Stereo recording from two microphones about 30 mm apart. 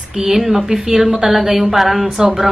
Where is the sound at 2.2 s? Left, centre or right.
Centre.